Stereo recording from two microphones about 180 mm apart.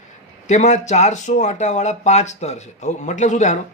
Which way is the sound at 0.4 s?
40° left (ahead or behind).